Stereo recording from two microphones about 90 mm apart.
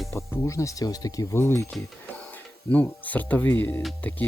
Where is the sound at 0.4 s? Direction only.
35° left (ahead or behind).